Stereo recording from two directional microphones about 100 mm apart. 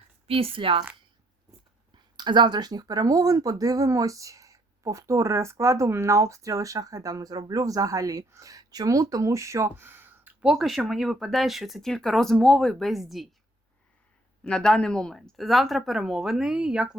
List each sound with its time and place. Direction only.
0.3 s speech: 70° right (ahead or behind)
2.1 s speech: 50° right (ahead or behind); by 10.3 s 20° right (ahead or behind)
10.4 s speech: 5° right (ahead or behind)
14.4 s speech: 5° left (ahead or behind); by 17.0 s 10° right (ahead or behind)